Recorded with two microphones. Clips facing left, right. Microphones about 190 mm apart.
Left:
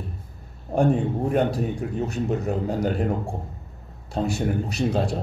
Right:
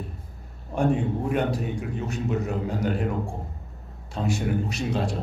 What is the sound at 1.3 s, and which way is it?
A man's voice, 40° left (ahead or behind).